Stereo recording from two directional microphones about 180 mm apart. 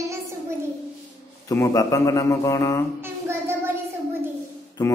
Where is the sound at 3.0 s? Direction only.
15° right (ahead or behind).